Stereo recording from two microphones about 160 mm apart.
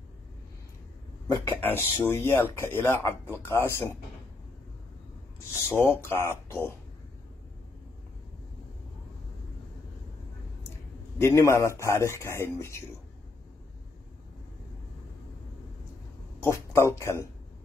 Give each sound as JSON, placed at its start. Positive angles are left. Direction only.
{"t": 1.2, "sound": "speech", "side_deg": 15}
{"t": 5.4, "sound": "speech", "side_deg": 15}
{"t": 11.1, "sound": "speech", "side_deg": 15}
{"t": 16.3, "sound": "speech", "side_deg": 15}